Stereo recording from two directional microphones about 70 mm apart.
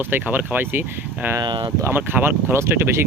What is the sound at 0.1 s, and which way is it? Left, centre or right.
Speech, right.